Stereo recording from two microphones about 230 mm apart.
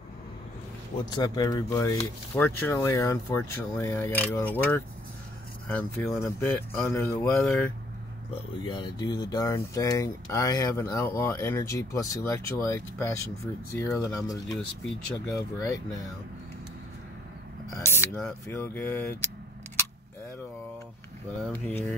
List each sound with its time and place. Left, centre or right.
1.1 s speech: centre
7.3 s speech: centre
8.6 s speech: centre
15.7 s speech: centre
17.6 s speech: centre
21.5 s speech: centre